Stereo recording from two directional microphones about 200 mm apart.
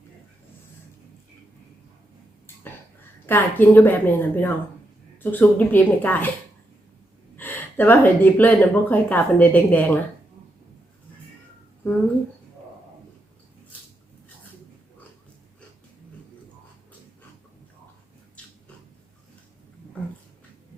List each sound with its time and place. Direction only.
3.2 s speech: 10° left (ahead or behind)
7.3 s speech: 10° left (ahead or behind)